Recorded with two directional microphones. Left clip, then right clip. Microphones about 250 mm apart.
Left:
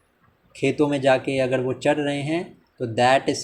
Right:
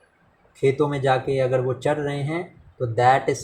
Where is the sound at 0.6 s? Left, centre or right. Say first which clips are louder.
Even; left.